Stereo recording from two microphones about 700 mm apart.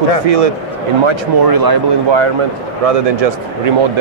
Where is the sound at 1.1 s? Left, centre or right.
Right.